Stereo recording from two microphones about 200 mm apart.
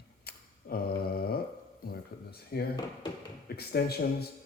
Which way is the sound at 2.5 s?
50° left (ahead or behind).